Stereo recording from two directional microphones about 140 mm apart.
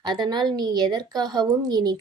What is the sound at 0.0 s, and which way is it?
A woman's voice, 30° right (ahead or behind).